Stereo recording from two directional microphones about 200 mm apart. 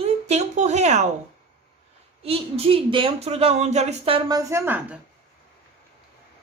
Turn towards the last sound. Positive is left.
turn(degrees=-10)  # may be behind; listen again after turning